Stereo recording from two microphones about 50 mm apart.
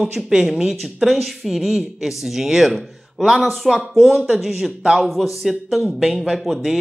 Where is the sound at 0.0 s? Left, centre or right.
Centre.